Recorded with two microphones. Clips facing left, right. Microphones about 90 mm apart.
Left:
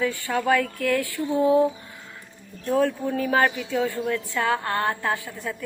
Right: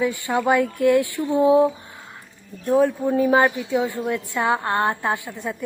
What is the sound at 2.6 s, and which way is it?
A woman's voice, 15° right (ahead or behind).